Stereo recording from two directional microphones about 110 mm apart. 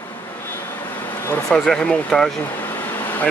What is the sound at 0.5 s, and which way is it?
Vehicle, 20° left (ahead or behind).